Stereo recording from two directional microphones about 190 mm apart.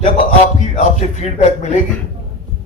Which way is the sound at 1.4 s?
35° left (ahead or behind).